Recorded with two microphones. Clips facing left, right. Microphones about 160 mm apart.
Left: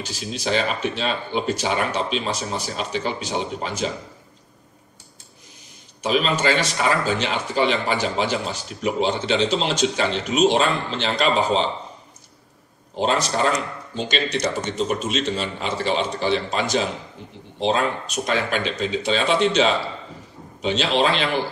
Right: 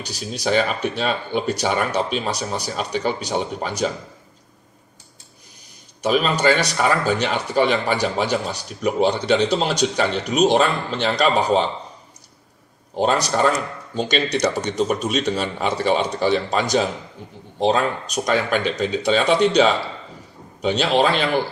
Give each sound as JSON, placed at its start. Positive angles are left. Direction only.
{"t": 0.4, "sound": "speech", "side_deg": -50}
{"t": 6.0, "sound": "speech", "side_deg": -45}
{"t": 12.9, "sound": "speech", "side_deg": -50}